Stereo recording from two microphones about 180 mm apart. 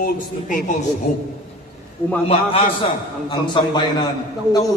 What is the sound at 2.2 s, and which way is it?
A man's voice, 30° left (ahead or behind).